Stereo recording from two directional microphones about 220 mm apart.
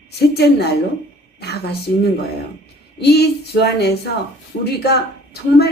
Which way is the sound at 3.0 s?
50° left (ahead or behind).